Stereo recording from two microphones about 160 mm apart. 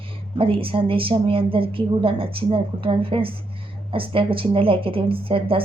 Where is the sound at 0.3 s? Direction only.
35° right (ahead or behind).